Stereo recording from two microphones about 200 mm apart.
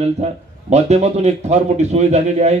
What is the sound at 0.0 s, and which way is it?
A man's voice, 35° right (ahead or behind).